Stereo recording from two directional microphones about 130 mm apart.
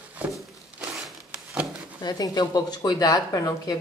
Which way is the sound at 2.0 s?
30° left (ahead or behind).